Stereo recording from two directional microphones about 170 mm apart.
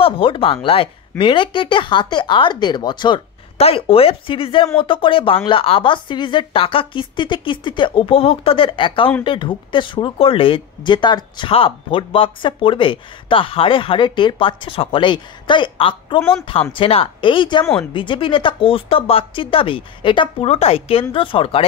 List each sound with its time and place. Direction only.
0.0 s speech: 30° left (ahead or behind)
16.2 s speech: 10° left (ahead or behind)
16.7 s speech: 30° left (ahead or behind)